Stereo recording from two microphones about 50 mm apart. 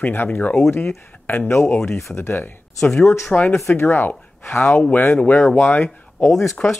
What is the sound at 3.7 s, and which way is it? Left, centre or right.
Speech, left.